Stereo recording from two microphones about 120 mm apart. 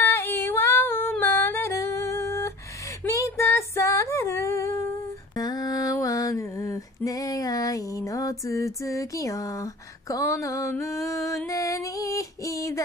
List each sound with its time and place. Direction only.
0.0 s female singing: 20° left (ahead or behind)